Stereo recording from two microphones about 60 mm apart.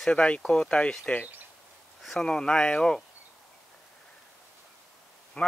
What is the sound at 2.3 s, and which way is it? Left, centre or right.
Speech, centre.